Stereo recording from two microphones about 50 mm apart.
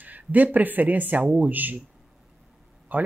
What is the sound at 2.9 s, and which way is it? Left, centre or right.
Speech, right.